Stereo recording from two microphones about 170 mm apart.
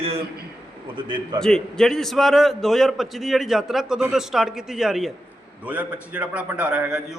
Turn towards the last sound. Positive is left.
turn(degrees=-5)  # may be behind; listen again after turning